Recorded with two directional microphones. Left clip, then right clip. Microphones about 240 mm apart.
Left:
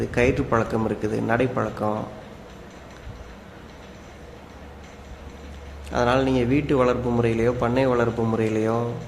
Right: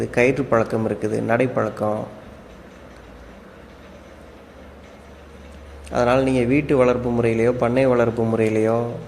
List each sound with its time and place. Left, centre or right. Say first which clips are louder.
0.0 s a man's voice: right 3 dB; centre
5.9 s a man's voice: right 3 dB; centre